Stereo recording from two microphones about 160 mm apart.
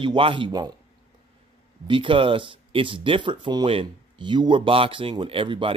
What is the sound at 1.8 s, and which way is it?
Speech, 30° right (ahead or behind).